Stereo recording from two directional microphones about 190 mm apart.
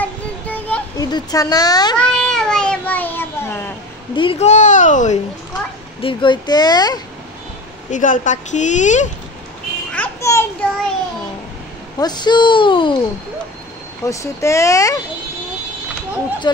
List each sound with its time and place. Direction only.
0.0 s a sound: 10° left (ahead or behind)
0.9 s a woman's voice: 20° left (ahead or behind)
2.0 s child singing: 5° left (ahead or behind)
4.1 s a woman's voice: 25° left (ahead or behind)
5.9 s a woman's voice: 25° left (ahead or behind)
7.9 s a woman's voice: 45° left (ahead or behind)
9.9 s children playing: 10° left (ahead or behind)
10.6 s child singing: 5° left (ahead or behind)
12.0 s a woman's voice: 20° left (ahead or behind)
14.0 s speech: 15° left (ahead or behind)
16.5 s speech: 25° left (ahead or behind)